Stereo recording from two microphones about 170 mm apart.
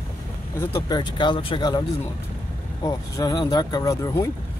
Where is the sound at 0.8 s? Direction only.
25° left (ahead or behind).